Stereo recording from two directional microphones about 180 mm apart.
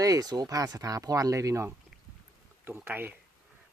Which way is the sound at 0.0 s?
20° right (ahead or behind).